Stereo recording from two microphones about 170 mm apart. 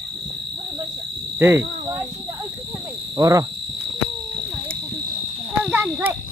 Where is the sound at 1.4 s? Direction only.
15° right (ahead or behind).